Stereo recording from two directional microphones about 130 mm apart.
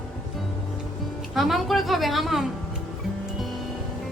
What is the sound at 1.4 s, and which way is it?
A woman's voice, centre (ahead or behind).